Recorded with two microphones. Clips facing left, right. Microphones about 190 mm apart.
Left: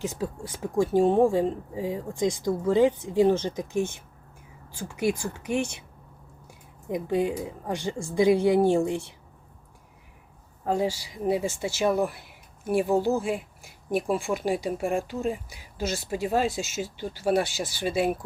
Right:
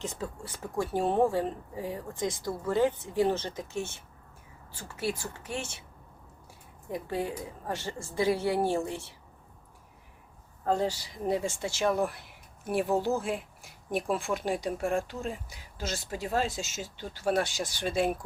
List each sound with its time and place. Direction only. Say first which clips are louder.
0.0 s speech: left 6 dB; 10° left (ahead or behind)
6.8 s speech: left 7 dB; 15° left (ahead or behind)
10.6 s speech: left 2 dB; 10° left (ahead or behind)